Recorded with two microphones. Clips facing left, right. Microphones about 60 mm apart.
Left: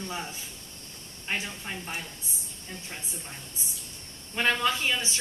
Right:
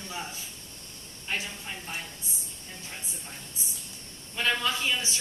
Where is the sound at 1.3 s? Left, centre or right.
Left.